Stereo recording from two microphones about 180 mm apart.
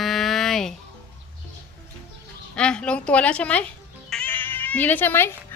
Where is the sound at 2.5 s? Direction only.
5° left (ahead or behind).